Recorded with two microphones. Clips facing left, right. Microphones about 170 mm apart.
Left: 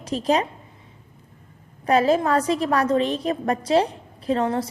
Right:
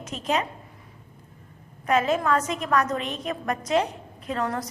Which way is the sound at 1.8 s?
35° left (ahead or behind).